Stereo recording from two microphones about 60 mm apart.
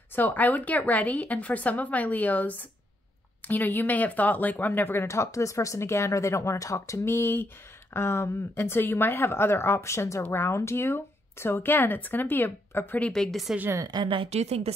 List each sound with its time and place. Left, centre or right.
0.1 s a woman's voice: left
5.0 s speech: left
7.1 s a woman's voice: left
13.1 s a woman's voice: centre